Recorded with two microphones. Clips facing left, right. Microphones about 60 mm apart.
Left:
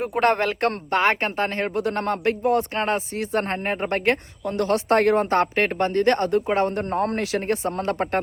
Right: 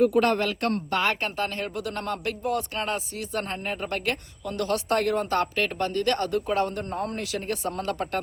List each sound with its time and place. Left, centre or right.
0.0 s speech: left